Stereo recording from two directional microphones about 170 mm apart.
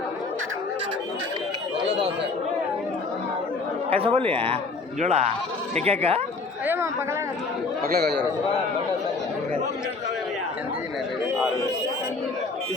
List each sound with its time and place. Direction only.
3.8 s speech: 35° right (ahead or behind)
7.9 s a man's voice: 70° right (ahead or behind)